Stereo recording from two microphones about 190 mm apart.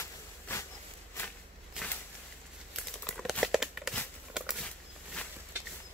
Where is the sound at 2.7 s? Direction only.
Centre (ahead or behind).